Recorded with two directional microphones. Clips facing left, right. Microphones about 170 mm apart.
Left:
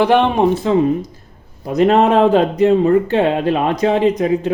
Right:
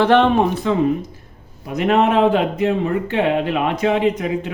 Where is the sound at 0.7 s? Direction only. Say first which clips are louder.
Left 3 dB; 30° left (ahead or behind).